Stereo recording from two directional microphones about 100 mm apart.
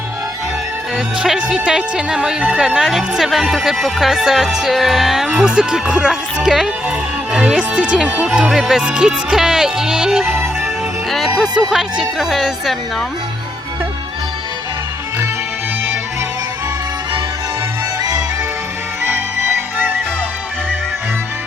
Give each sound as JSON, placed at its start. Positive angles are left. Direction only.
{"t": 0.9, "sound": "speech", "side_deg": -5}
{"t": 10.3, "sound": "music", "side_deg": -25}
{"t": 11.7, "sound": "speech", "side_deg": -5}